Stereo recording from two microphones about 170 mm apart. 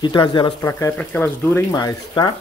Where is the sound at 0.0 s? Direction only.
25° left (ahead or behind).